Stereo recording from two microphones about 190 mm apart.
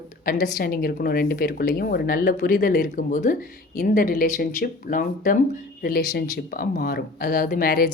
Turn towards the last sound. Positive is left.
turn(degrees=50)  # may be behind; listen again after turning